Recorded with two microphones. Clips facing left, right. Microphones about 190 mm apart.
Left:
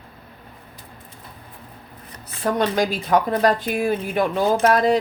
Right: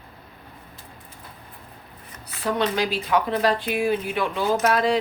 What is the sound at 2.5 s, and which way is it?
Speech, 45° left (ahead or behind).